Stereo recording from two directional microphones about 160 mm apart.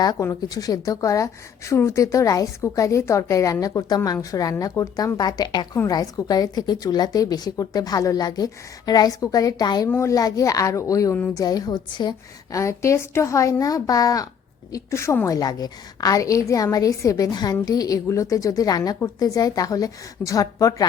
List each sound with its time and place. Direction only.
0.0 s a woman's voice: 20° left (ahead or behind)